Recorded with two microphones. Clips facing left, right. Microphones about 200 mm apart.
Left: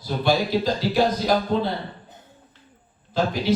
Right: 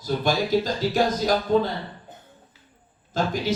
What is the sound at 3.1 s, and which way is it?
Speech, 45° right (ahead or behind).